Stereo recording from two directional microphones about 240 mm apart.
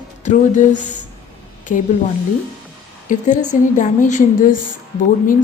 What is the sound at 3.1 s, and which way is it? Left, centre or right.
A woman's voice, left.